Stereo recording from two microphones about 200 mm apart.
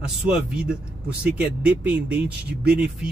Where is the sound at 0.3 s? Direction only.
5° right (ahead or behind).